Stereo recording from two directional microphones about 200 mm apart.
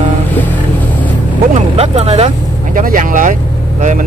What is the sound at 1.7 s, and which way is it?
Speech, 30° right (ahead or behind).